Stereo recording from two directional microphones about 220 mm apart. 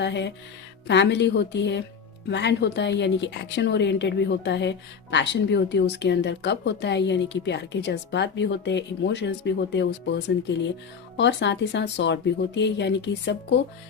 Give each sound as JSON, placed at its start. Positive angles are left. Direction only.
{"t": 0.0, "sound": "a woman's voice", "side_deg": 50}